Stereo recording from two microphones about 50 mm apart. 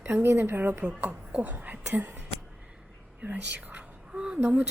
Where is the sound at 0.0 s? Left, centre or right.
Right.